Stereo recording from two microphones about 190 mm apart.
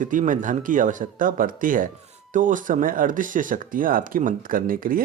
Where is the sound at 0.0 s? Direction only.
45° right (ahead or behind).